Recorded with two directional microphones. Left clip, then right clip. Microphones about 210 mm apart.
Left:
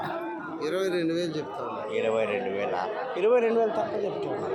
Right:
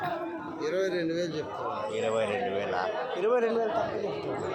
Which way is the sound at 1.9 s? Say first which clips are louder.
Left 4 dB; 5° left (ahead or behind).